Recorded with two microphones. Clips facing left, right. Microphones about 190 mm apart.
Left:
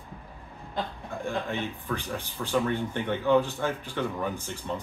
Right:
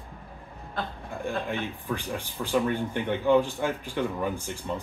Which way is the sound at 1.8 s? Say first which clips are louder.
Right 1 dB; 10° right (ahead or behind).